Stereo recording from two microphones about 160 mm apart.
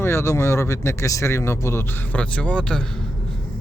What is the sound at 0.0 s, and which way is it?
Speech, 15° left (ahead or behind).